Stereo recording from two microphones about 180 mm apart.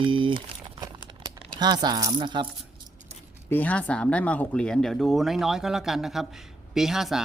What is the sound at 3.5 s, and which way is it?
Speech, 10° left (ahead or behind).